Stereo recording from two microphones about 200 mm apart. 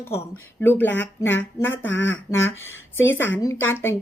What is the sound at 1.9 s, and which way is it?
Speech, 65° left (ahead or behind).